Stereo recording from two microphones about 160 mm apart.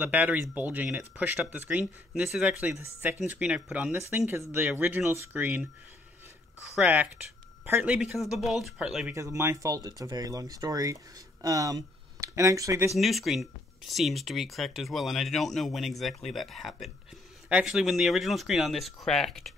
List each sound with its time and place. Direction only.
0.0 s speech: 10° right (ahead or behind)
6.8 s speech: 10° right (ahead or behind)
9.1 s speech: 20° right (ahead or behind)
12.9 s speech: centre (ahead or behind)